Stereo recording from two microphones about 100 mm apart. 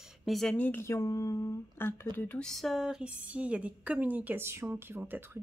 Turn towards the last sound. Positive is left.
turn(degrees=-20)  # may be behind; listen again after turning